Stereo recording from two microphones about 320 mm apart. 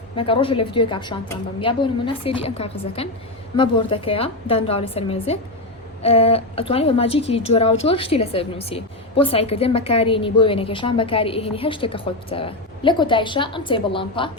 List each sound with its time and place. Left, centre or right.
0.2 s a woman's voice: centre